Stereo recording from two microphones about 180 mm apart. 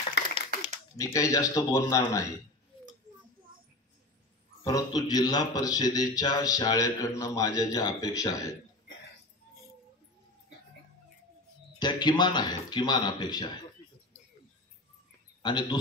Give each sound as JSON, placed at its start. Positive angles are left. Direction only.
{"t": 0.9, "sound": "speech", "side_deg": 20}
{"t": 4.6, "sound": "a man's voice", "side_deg": 20}
{"t": 11.8, "sound": "a man's voice", "side_deg": 25}
{"t": 15.4, "sound": "a man's voice", "side_deg": 25}